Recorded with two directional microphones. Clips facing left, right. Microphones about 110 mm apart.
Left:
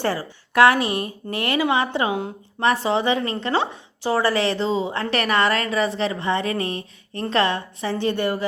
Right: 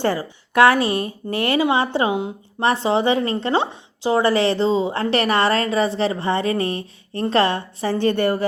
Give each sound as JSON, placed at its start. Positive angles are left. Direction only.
{"t": 0.0, "sound": "a woman's voice", "side_deg": -25}
{"t": 7.9, "sound": "a woman's voice", "side_deg": -50}